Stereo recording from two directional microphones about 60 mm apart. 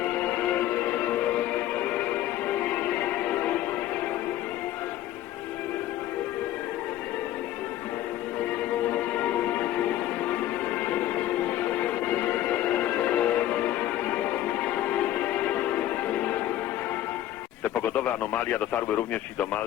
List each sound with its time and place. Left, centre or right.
0.3 s music: left
2.6 s music: left
8.9 s music: left
10.8 s music: left
17.6 s speech: left